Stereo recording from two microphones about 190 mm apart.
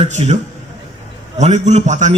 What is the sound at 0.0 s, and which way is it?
Speech, 35° right (ahead or behind).